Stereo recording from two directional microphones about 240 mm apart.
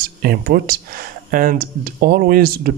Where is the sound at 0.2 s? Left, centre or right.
Right.